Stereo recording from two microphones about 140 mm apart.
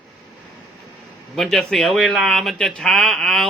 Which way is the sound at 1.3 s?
Centre (ahead or behind).